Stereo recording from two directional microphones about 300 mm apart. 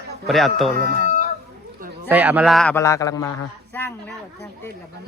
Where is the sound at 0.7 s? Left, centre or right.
Right.